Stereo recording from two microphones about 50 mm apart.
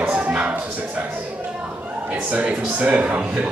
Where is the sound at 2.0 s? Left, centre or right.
Right.